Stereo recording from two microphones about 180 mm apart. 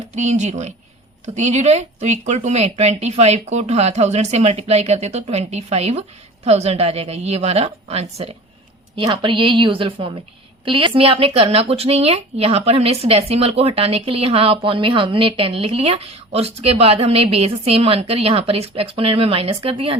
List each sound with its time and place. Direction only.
0.2 s a woman's voice: 40° right (ahead or behind)